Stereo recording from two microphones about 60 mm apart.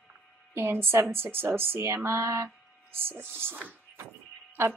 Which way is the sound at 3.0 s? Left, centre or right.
Right.